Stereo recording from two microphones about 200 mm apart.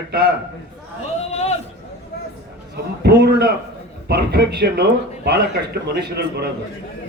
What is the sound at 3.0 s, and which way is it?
A man's voice, 55° right (ahead or behind).